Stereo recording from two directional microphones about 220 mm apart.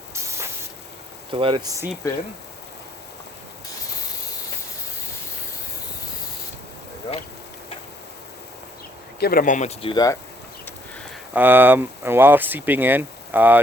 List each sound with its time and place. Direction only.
0.1 s spray: 10° right (ahead or behind)
1.3 s speech: 25° right (ahead or behind)
9.2 s speech: 40° left (ahead or behind); by 10.2 s 20° left (ahead or behind)
11.3 s speech: 10° right (ahead or behind)